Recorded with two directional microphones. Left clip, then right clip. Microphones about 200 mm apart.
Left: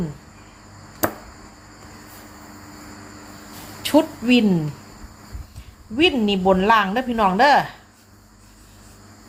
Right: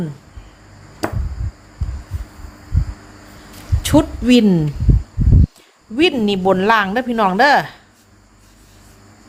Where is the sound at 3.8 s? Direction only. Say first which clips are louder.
Right 3 dB; 30° right (ahead or behind).